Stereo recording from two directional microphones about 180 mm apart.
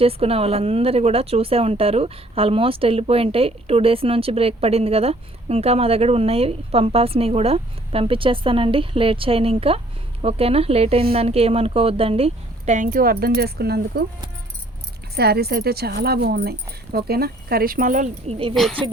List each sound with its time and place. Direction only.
0.0 s a woman's voice: 35° right (ahead or behind); by 14.0 s 60° right (ahead or behind)
15.1 s a woman's voice: 60° right (ahead or behind); by 18.5 s 35° right (ahead or behind)